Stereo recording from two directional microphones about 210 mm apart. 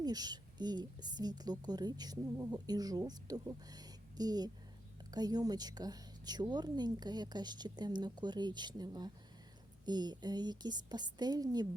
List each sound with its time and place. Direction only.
0.0 s a woman's voice: 20° right (ahead or behind)